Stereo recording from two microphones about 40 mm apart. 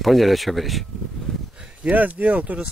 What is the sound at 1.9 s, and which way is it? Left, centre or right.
Speech, right.